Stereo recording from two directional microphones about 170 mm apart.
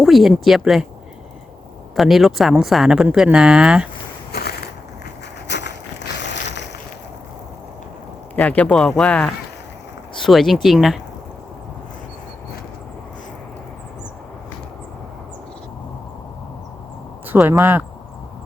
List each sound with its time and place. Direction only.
0.0 s speech: centre (ahead or behind)
2.0 s speech: centre (ahead or behind)
4.3 s crushing: 70° left (ahead or behind)
5.5 s a sound: 85° left
8.4 s speech: 10° left (ahead or behind)
17.5 s speech: 10° right (ahead or behind)